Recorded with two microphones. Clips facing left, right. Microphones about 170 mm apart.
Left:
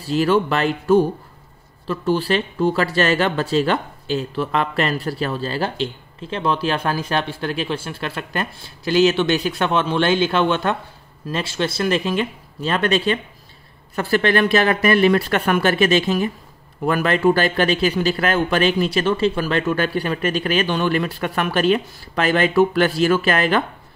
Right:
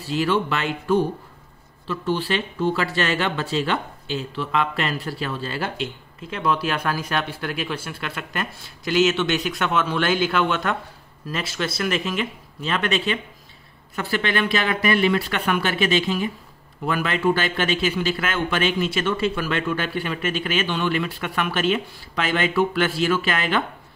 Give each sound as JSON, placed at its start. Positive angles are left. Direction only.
{"t": 0.1, "sound": "speech", "side_deg": 40}